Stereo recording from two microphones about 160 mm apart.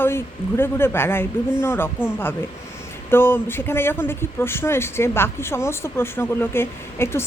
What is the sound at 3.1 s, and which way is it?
Speech, 15° left (ahead or behind).